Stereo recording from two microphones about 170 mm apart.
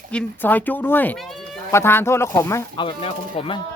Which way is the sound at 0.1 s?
10° left (ahead or behind).